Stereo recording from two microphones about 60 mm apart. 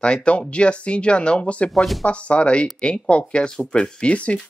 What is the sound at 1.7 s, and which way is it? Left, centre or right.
Speech, centre.